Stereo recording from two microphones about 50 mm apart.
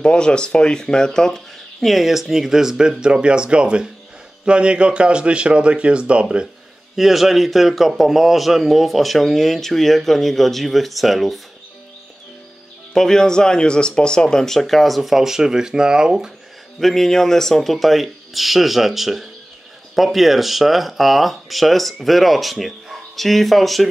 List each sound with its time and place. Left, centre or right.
0.0 s a man's voice: centre
7.0 s a man's voice: centre
12.9 s a man's voice: centre
16.8 s a man's voice: centre